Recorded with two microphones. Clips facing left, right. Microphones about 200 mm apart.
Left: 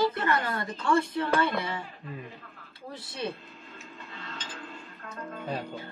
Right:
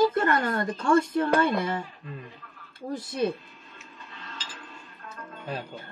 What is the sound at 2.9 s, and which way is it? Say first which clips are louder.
Speech: right 8 dB; 50° right (ahead or behind).